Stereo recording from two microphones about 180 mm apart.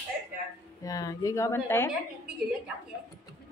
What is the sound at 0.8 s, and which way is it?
Speech, 20° left (ahead or behind).